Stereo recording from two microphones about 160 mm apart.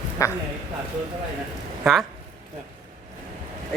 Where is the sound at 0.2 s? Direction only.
20° left (ahead or behind).